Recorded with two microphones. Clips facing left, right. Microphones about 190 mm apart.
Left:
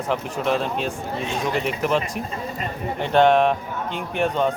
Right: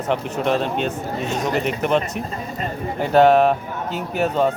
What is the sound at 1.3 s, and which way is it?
Speech, 40° right (ahead or behind).